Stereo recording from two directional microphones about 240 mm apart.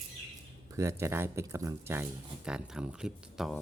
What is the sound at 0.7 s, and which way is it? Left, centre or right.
Speech, centre.